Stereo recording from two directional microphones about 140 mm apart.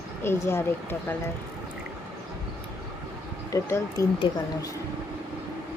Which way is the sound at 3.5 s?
25° left (ahead or behind).